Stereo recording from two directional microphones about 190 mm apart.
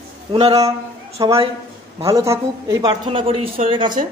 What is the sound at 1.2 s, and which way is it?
A man's voice, 20° right (ahead or behind).